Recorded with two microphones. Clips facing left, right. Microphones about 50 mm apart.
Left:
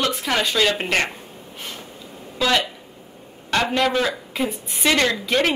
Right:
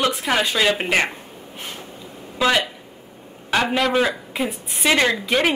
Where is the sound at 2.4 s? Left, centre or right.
Centre.